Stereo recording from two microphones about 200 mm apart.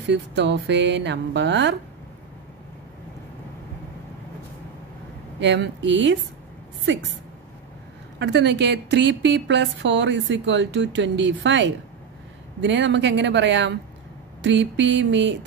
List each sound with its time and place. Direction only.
0.0 s a woman's voice: 60° right (ahead or behind)
5.4 s a woman's voice: 60° right (ahead or behind)
8.2 s a woman's voice: 60° right (ahead or behind)